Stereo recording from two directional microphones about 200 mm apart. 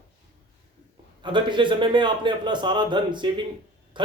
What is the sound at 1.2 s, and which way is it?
A man's voice, 25° right (ahead or behind).